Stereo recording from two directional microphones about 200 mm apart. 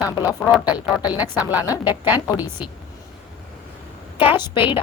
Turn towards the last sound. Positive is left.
turn(degrees=25)  # may be behind; listen again after turning